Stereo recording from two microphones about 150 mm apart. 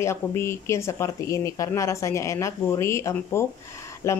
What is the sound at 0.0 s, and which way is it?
Speech, 15° left (ahead or behind).